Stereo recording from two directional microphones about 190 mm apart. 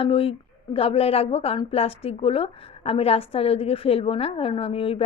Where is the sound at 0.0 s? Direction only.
30° left (ahead or behind).